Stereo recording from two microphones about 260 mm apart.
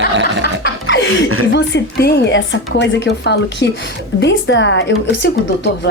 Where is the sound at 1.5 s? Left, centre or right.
Left.